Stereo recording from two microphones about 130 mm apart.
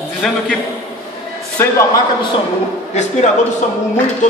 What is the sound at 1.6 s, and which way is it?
Speech, 20° left (ahead or behind).